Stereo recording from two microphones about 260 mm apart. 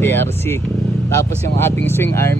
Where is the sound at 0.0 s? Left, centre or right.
Centre.